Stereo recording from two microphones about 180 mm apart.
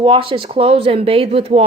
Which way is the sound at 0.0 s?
30° right (ahead or behind).